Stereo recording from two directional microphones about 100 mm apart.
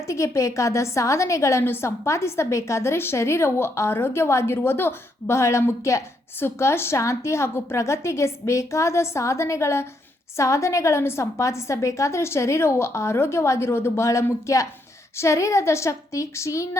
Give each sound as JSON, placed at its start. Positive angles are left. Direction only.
{"t": 0.1, "sound": "a woman's voice", "side_deg": 30}